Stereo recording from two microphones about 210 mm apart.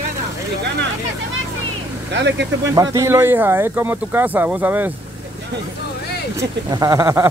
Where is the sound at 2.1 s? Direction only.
55° right (ahead or behind).